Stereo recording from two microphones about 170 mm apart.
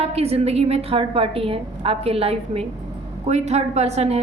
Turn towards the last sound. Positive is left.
turn(degrees=-40)  # may be behind; listen again after turning